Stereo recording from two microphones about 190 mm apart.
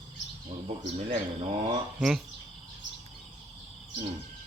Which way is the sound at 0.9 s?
35° right (ahead or behind).